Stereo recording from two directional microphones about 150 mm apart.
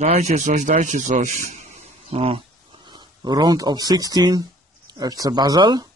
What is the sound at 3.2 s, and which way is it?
Speech, 30° right (ahead or behind).